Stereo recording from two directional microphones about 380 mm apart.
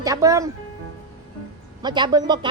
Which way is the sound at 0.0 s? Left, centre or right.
Centre.